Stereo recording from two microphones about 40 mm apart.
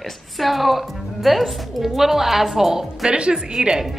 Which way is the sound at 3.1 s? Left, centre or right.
Right.